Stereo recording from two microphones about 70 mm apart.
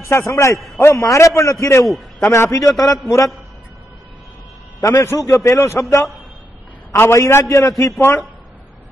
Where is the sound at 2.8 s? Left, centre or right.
Left.